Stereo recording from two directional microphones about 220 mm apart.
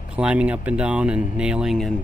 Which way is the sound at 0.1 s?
5° right (ahead or behind).